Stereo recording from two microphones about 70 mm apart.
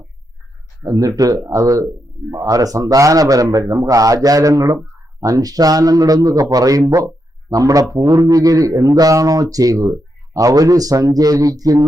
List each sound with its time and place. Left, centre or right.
0.8 s a man's voice: right